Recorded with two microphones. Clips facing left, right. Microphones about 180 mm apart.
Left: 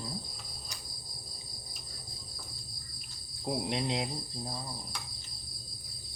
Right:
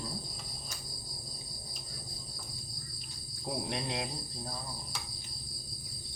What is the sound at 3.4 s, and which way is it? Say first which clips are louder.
Cricket: left 4 dB; 20° left (ahead or behind).